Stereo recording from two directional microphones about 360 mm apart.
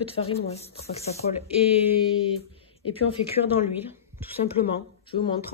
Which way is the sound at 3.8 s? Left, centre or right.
Centre.